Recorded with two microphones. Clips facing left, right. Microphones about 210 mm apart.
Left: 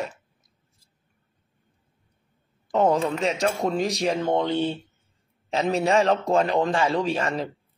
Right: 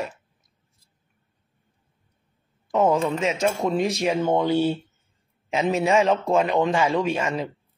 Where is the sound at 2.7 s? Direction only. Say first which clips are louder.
Right 1 dB; centre (ahead or behind).